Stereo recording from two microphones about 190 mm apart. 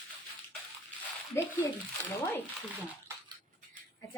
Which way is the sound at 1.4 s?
15° left (ahead or behind).